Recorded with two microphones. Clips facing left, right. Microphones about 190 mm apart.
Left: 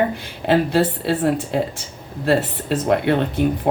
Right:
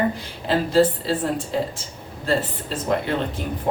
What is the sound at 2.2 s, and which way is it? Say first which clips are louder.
Speech: left 4 dB; 65° left (ahead or behind).